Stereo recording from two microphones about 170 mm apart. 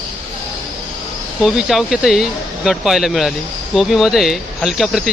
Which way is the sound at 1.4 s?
5° right (ahead or behind).